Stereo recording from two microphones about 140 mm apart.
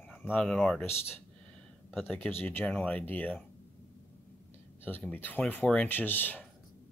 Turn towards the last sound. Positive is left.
turn(degrees=15)  # may be behind; listen again after turning